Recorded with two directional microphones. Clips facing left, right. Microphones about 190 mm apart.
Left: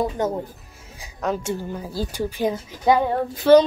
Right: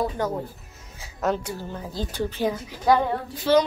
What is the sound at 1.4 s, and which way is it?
Speech, 20° left (ahead or behind).